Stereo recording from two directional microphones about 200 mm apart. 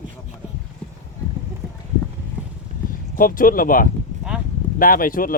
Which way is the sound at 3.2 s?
45° left (ahead or behind).